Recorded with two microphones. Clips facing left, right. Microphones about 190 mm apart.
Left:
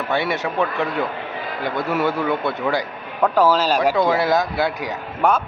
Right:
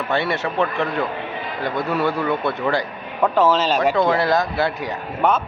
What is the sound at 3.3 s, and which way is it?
A man's voice, 10° left (ahead or behind).